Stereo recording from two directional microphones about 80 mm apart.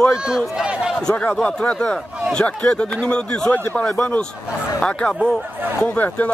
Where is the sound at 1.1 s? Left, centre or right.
Centre.